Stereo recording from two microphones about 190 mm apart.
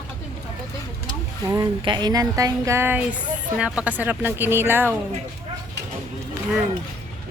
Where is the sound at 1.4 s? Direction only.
15° right (ahead or behind).